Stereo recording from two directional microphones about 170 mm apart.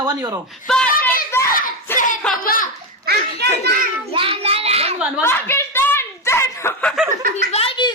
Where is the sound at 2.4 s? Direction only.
60° left (ahead or behind).